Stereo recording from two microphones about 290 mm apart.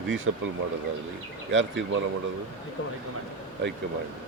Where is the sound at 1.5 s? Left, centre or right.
Right.